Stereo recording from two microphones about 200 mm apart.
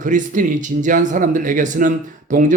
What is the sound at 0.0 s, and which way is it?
Speech, 40° right (ahead or behind).